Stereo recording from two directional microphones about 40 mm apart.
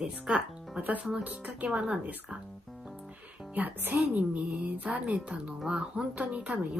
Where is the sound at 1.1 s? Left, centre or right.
Right.